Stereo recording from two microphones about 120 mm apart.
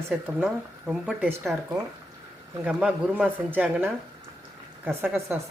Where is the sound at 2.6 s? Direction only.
10° right (ahead or behind).